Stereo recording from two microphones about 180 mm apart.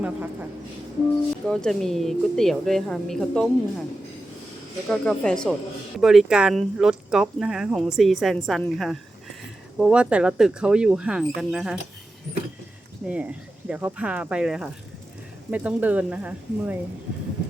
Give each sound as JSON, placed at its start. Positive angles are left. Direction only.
{"t": 0.0, "sound": "speech", "side_deg": -10}
{"t": 1.5, "sound": "speech", "side_deg": 0}
{"t": 4.9, "sound": "speech", "side_deg": 5}
{"t": 13.1, "sound": "speech", "side_deg": -5}